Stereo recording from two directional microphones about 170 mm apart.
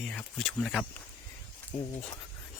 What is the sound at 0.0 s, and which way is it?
Speech, 5° left (ahead or behind).